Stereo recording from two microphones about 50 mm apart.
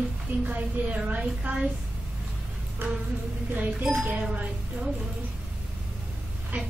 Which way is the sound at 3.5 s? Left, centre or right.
Right.